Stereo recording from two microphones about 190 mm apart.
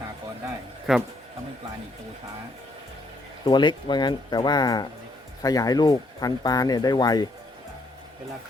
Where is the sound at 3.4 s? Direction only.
25° left (ahead or behind).